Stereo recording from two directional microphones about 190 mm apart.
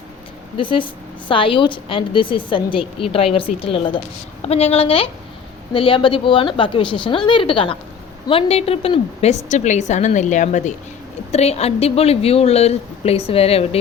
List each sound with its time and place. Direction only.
0.5 s a woman's voice: 25° left (ahead or behind)